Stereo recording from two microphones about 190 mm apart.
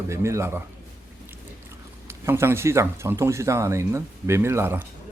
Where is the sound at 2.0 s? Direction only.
15° right (ahead or behind).